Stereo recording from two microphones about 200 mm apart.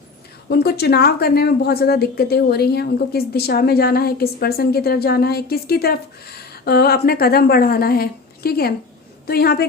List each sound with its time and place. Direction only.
0.4 s a woman's voice: 50° left (ahead or behind)